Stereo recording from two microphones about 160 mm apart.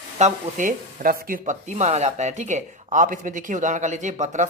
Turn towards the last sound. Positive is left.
turn(degrees=-50)  # may be behind; listen again after turning